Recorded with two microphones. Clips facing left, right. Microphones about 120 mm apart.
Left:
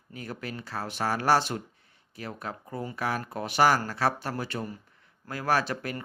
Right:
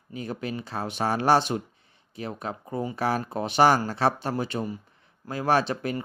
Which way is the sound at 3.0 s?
30° right (ahead or behind).